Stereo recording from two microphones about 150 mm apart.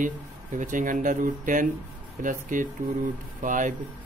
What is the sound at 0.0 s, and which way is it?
Speech, 60° right (ahead or behind).